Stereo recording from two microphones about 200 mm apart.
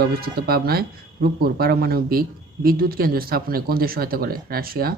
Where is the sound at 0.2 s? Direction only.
50° right (ahead or behind).